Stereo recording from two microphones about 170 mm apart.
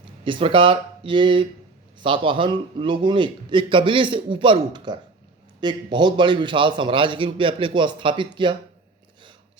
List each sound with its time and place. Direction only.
0.3 s a man's voice: 30° right (ahead or behind)